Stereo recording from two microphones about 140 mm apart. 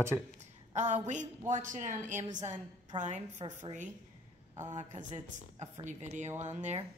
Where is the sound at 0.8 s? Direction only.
60° right (ahead or behind).